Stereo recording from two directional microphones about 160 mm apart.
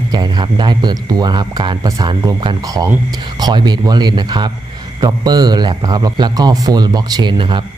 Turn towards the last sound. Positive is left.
turn(degrees=-30)  # may be behind; listen again after turning